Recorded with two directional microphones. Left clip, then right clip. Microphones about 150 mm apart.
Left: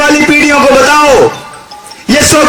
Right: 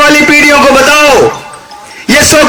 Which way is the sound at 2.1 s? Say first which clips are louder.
Right 2 dB; 25° right (ahead or behind).